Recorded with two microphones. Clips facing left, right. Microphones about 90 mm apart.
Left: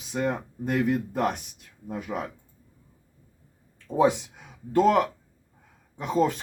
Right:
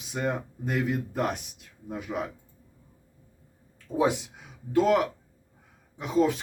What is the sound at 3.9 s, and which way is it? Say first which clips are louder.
Speech: left 3 dB; 35° left (ahead or behind).